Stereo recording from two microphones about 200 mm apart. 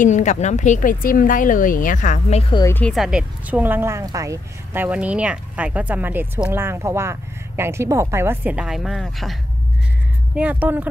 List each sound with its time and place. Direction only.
0.0 s speech: 35° left (ahead or behind)
2.5 s speech: 15° left (ahead or behind)
2.8 s speech: centre (ahead or behind)